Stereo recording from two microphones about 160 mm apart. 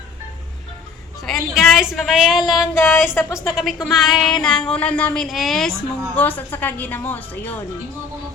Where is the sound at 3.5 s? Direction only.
Centre (ahead or behind).